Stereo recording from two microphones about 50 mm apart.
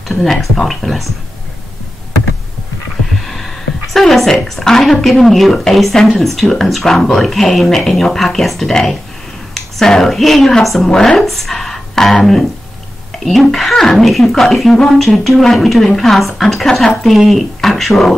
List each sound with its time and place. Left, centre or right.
0.1 s speech: centre
3.2 s a sound: centre
5.0 s speech: centre
10.9 s speech: centre
11.1 s speech: centre
11.5 s music: centre
12.2 s speech: centre